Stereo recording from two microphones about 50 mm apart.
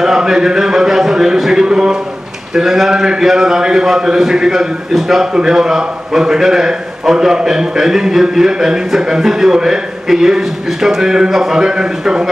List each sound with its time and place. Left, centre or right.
0.0 s a man's voice: centre